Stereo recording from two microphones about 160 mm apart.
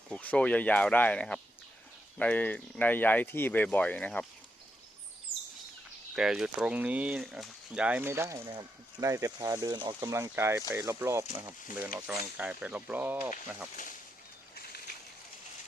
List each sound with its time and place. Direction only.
0.1 s speech: 10° left (ahead or behind)
6.1 s speech: 5° right (ahead or behind)